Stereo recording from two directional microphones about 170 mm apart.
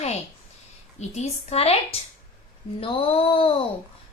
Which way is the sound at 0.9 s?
40° left (ahead or behind).